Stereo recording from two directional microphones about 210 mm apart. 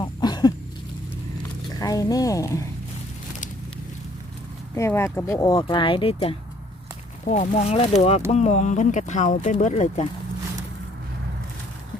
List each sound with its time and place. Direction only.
0.0 s a sound: 20° left (ahead or behind)
1.8 s a woman's voice: 15° left (ahead or behind)
4.7 s speech: 15° left (ahead or behind); by 10.1 s 35° left (ahead or behind)